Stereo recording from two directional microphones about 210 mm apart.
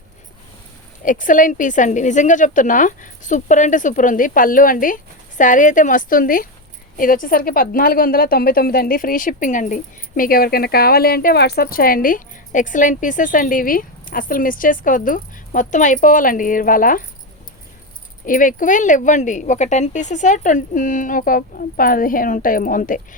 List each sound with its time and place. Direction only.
1.0 s a woman's voice: 40° left (ahead or behind)
18.3 s a woman's voice: 40° left (ahead or behind)